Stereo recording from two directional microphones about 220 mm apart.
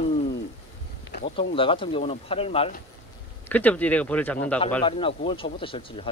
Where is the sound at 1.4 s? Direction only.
25° left (ahead or behind).